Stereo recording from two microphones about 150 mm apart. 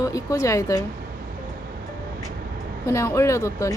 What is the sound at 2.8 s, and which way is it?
Speech, 20° left (ahead or behind).